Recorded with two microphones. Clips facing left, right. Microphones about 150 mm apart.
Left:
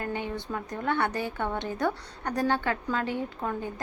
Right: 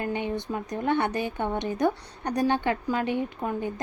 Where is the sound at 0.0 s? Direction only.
20° right (ahead or behind).